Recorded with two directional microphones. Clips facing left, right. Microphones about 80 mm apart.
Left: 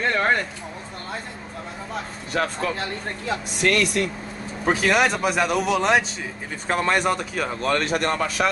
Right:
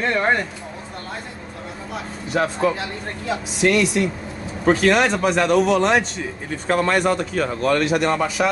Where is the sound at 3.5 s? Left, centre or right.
Left.